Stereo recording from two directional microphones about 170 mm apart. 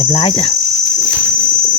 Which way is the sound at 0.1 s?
35° left (ahead or behind).